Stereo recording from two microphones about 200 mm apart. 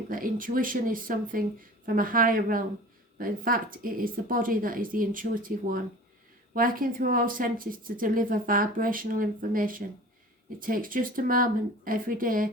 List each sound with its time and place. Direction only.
0.1 s speech: 45° right (ahead or behind)